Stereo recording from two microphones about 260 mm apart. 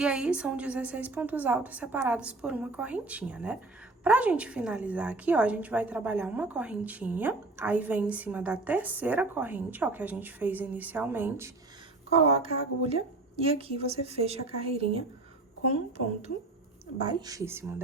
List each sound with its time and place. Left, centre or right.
0.0 s a woman's voice: centre
12.4 s speech: right
17.1 s a woman's voice: centre